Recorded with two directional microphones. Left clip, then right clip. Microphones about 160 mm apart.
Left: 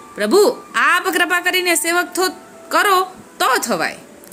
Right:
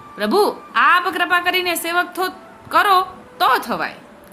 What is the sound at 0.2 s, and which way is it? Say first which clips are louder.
A woman's voice: left 3 dB; 15° left (ahead or behind).